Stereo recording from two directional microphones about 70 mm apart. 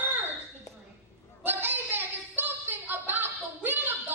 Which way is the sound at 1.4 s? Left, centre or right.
Right.